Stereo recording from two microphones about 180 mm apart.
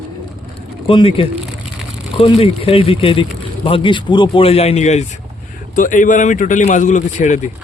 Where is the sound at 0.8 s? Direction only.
30° left (ahead or behind).